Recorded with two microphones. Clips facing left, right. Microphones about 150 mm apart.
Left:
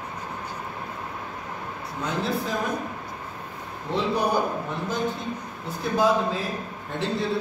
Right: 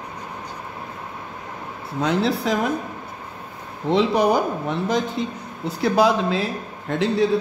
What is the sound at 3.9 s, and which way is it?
A man's voice, 90° right.